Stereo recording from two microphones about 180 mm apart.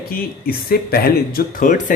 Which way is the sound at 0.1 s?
55° left (ahead or behind).